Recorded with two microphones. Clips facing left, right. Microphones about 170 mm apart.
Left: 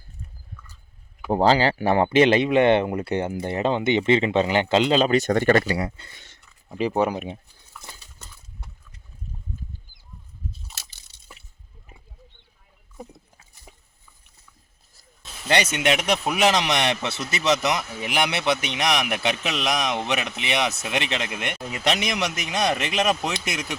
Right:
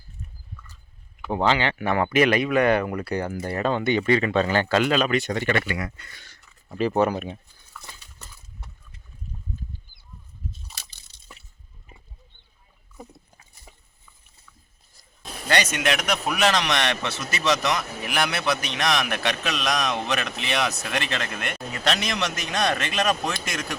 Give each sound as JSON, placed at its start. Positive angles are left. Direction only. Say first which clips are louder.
{"t": 1.3, "sound": "speech", "louder": "left 4 dB", "side_deg": 35}
{"t": 5.2, "sound": "speech", "louder": "left 6 dB", "side_deg": 50}
{"t": 6.7, "sound": "speech", "louder": "right 1 dB", "side_deg": 15}
{"t": 13.7, "sound": "a sound", "louder": "left 2 dB", "side_deg": 15}
{"t": 15.4, "sound": "speech", "louder": "left 2 dB", "side_deg": 25}